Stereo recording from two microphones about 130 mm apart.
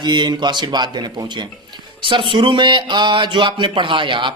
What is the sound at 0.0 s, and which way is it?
Speech, 35° right (ahead or behind).